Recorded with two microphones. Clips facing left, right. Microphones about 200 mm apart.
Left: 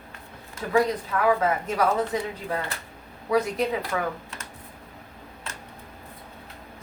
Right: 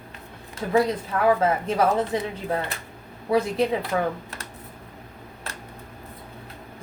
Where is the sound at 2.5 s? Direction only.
20° right (ahead or behind).